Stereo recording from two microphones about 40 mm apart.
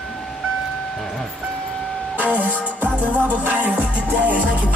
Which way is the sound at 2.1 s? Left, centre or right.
Right.